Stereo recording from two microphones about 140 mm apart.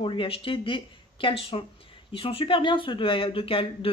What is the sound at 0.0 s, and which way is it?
Speech, 40° left (ahead or behind).